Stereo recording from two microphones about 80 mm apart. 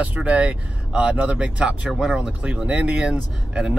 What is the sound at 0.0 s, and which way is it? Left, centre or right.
Speech, centre.